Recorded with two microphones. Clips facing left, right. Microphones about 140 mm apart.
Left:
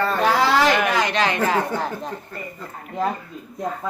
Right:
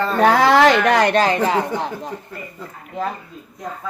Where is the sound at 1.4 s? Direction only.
15° right (ahead or behind).